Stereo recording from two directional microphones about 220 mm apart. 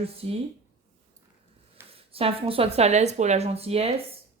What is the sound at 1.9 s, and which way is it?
Speech, 25° right (ahead or behind).